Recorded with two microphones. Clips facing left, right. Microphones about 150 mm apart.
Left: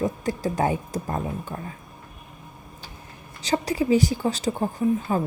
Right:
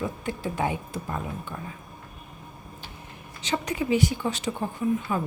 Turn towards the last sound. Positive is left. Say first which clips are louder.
# left 3 dB
turn(degrees=35)  # may be behind; listen again after turning